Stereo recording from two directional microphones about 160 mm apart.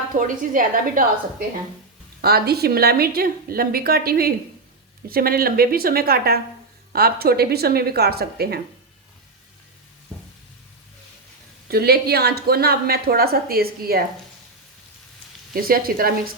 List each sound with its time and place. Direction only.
0.1 s a woman's voice: 55° right (ahead or behind)
2.2 s a woman's voice: 80° right
11.7 s a woman's voice: 75° right (ahead or behind)
15.5 s a woman's voice: 65° right (ahead or behind)